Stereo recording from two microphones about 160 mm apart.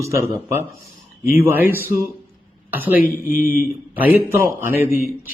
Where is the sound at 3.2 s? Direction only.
60° left (ahead or behind).